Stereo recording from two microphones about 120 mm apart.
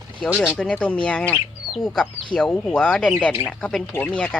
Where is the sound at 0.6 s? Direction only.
10° left (ahead or behind).